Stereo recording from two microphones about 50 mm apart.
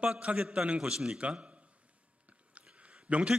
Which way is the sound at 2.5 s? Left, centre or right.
Right.